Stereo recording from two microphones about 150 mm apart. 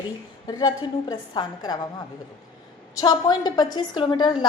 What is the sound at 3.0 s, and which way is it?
A woman's voice, 30° left (ahead or behind).